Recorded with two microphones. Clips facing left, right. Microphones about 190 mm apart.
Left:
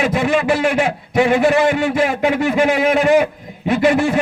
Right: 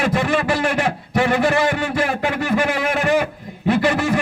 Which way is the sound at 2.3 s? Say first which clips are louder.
Left 4 dB; 20° left (ahead or behind).